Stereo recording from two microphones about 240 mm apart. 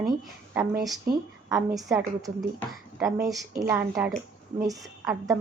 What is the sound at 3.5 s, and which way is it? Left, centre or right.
A woman's voice, centre.